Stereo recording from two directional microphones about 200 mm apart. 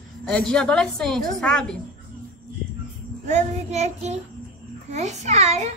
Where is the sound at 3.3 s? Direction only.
35° right (ahead or behind).